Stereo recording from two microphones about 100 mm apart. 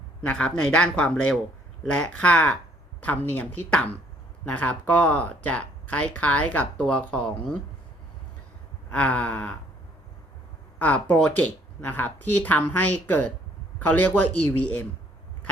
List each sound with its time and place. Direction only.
0.2 s speech: 15° left (ahead or behind)
8.9 s speech: 15° left (ahead or behind)
10.8 s speech: 15° left (ahead or behind)